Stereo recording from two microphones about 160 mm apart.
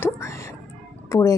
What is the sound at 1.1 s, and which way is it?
Speech, 20° left (ahead or behind).